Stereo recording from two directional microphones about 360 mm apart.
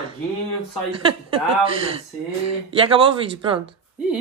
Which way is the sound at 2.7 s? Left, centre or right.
Centre.